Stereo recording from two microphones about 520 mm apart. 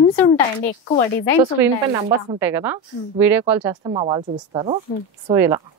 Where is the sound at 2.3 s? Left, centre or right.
Centre.